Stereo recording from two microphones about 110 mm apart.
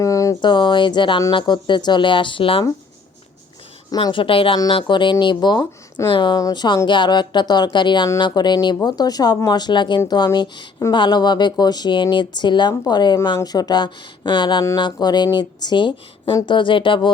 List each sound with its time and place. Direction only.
0.0 s a sound: 30° left (ahead or behind)
0.4 s speech: 45° left (ahead or behind)
3.9 s speech: 45° left (ahead or behind)